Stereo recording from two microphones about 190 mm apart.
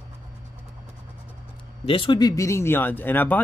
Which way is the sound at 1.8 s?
25° left (ahead or behind).